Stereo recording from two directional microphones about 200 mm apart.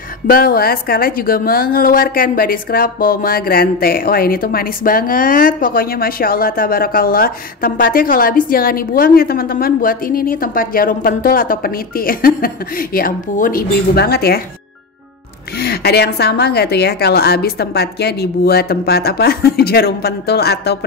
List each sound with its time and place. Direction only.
0.3 s a woman's voice: 50° left (ahead or behind)
15.6 s a woman's voice: 55° left (ahead or behind)